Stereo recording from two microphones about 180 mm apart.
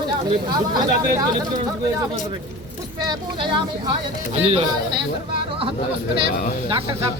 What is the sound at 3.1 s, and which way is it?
Speech, 25° right (ahead or behind).